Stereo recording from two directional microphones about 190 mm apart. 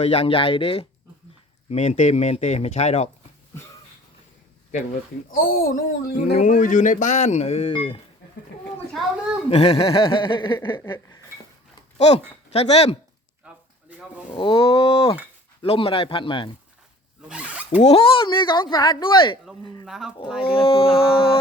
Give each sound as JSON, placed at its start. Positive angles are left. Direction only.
{"t": 0.0, "sound": "speech", "side_deg": 30}
{"t": 5.3, "sound": "a child's voice", "side_deg": 50}
{"t": 9.5, "sound": "speech", "side_deg": 30}
{"t": 11.9, "sound": "speech", "side_deg": 35}
{"t": 14.3, "sound": "speech", "side_deg": 25}
{"t": 17.2, "sound": "zipper", "side_deg": -5}
{"t": 17.7, "sound": "speech", "side_deg": 35}
{"t": 19.8, "sound": "a sound", "side_deg": 0}
{"t": 20.4, "sound": "speech", "side_deg": 30}
{"t": 20.8, "sound": "a sound", "side_deg": -5}